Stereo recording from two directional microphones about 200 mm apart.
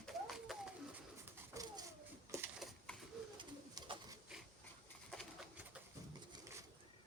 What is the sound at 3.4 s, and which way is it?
Pigeon, 20° right (ahead or behind).